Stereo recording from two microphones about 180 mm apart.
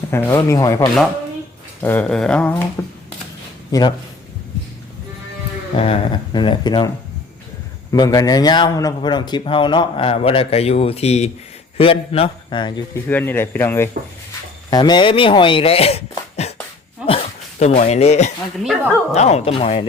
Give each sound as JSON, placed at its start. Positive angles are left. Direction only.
{"t": 0.1, "sound": "speech", "side_deg": 15}
{"t": 3.7, "sound": "speech", "side_deg": 20}
{"t": 5.7, "sound": "speech", "side_deg": 30}
{"t": 7.9, "sound": "speech", "side_deg": 20}
{"t": 13.1, "sound": "speech", "side_deg": 10}
{"t": 14.7, "sound": "speech", "side_deg": 25}
{"t": 17.0, "sound": "dog", "side_deg": -5}
{"t": 17.6, "sound": "speech", "side_deg": 40}